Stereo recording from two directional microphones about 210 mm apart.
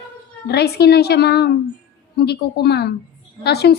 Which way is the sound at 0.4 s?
50° left (ahead or behind).